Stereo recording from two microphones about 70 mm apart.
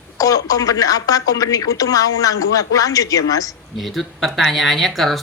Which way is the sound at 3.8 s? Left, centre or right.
Centre.